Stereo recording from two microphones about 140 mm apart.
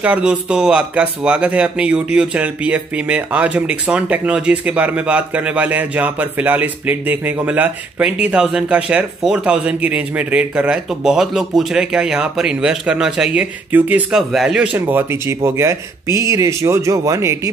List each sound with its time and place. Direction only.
0.0 s speech: 10° right (ahead or behind)
14.1 s speech: 5° right (ahead or behind); by 17.5 s 20° right (ahead or behind)